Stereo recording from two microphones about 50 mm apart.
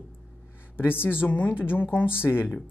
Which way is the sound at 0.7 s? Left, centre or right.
Left.